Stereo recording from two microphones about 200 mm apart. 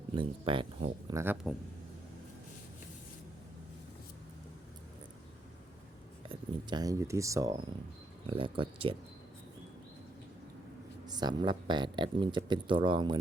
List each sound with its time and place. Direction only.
0.1 s speech: 25° right (ahead or behind)
1.5 s speech: centre (ahead or behind)
6.2 s speech: 20° right (ahead or behind)
8.3 s speech: 25° right (ahead or behind)
11.0 s speech: 20° right (ahead or behind)